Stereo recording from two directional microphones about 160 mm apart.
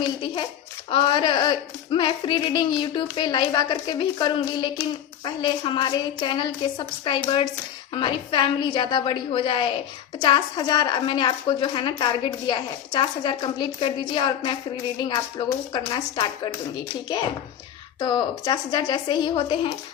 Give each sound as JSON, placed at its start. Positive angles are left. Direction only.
{"t": 0.9, "sound": "a woman's voice", "side_deg": 30}
{"t": 18.0, "sound": "a woman's voice", "side_deg": 25}